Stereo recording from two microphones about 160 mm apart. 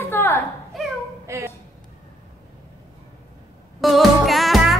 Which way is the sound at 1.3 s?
20° right (ahead or behind).